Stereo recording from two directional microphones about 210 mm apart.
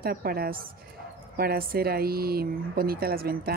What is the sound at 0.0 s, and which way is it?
Speech, 45° right (ahead or behind).